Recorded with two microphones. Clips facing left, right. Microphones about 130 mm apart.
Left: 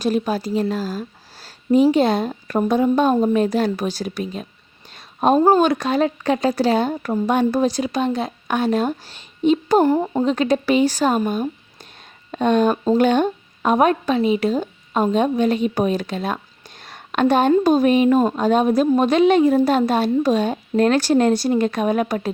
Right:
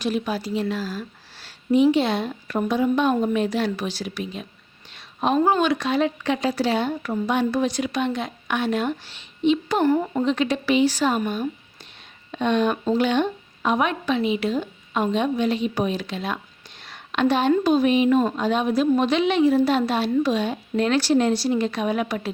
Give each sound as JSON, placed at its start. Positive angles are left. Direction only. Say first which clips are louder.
{"t": 0.0, "sound": "a woman's voice", "louder": "left 4 dB", "side_deg": 40}
{"t": 16.8, "sound": "a sound", "louder": "left 3 dB", "side_deg": 45}
{"t": 17.5, "sound": "a woman's voice", "louder": "left 3 dB", "side_deg": 45}